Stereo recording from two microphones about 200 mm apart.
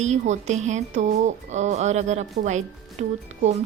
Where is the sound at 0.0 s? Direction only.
35° right (ahead or behind).